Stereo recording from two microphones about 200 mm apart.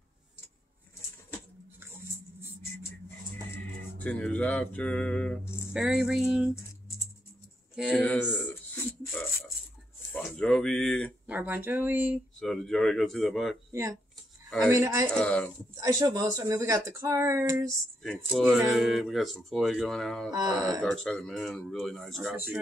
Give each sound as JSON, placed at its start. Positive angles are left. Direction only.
{"t": 3.5, "sound": "music", "side_deg": 5}
{"t": 5.7, "sound": "speech", "side_deg": -5}
{"t": 7.9, "sound": "a sound", "side_deg": 5}
{"t": 10.1, "sound": "speech", "side_deg": 5}
{"t": 11.2, "sound": "speech", "side_deg": -10}
{"t": 12.4, "sound": "speech", "side_deg": 0}
{"t": 13.7, "sound": "speech", "side_deg": -15}
{"t": 15.0, "sound": "speech", "side_deg": 5}
{"t": 15.7, "sound": "speech", "side_deg": -15}
{"t": 18.3, "sound": "speech", "side_deg": 0}
{"t": 20.2, "sound": "mantra", "side_deg": -20}
{"t": 20.8, "sound": "speech", "side_deg": 0}